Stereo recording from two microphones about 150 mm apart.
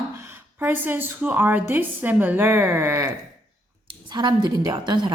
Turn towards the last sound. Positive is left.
turn(degrees=-30)  # may be behind; listen again after turning